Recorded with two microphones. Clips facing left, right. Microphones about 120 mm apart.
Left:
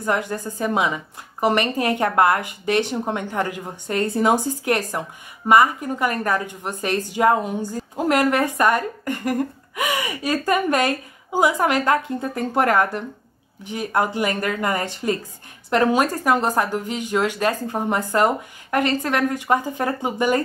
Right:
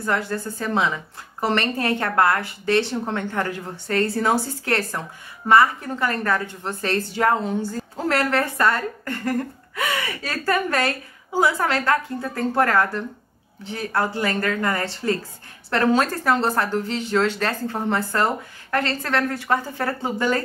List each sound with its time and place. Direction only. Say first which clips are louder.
0.0 s a woman's voice: left 1 dB; 15° left (ahead or behind)